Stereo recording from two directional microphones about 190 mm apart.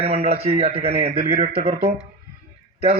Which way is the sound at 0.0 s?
35° right (ahead or behind).